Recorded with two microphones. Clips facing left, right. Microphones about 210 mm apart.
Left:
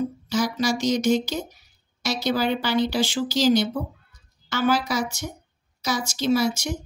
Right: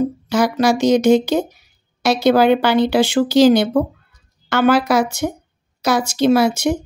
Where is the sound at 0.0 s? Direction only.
60° right (ahead or behind).